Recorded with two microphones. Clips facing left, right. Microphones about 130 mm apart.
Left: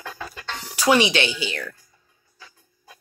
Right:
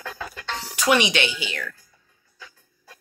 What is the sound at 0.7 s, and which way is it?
Speech, 30° left (ahead or behind).